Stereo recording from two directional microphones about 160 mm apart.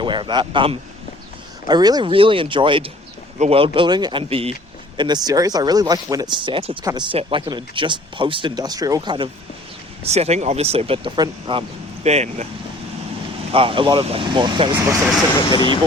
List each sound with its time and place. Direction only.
0.0 s speech: 30° right (ahead or behind)
10.0 s speech: 40° right (ahead or behind)
12.0 s speech: 45° right (ahead or behind)
13.5 s speech: 35° right (ahead or behind)
14.8 s speech: 20° right (ahead or behind)
15.5 s speech: 30° left (ahead or behind)